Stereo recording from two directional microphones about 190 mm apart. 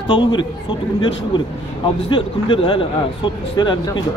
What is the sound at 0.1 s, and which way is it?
A man's voice, 25° left (ahead or behind).